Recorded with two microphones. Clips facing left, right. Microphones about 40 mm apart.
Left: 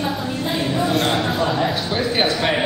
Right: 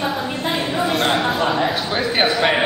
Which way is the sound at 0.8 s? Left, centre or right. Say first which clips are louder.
Right 2 dB; centre.